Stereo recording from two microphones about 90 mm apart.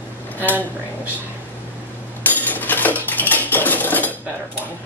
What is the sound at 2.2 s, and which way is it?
Dishes, 20° left (ahead or behind).